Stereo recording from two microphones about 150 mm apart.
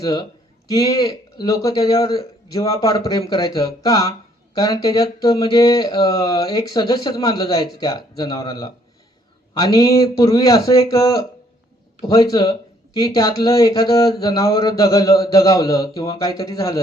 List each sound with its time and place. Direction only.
0.0 s speech: 25° left (ahead or behind)